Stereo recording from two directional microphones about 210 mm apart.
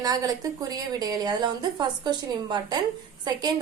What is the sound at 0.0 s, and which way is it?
A woman's voice, 15° right (ahead or behind).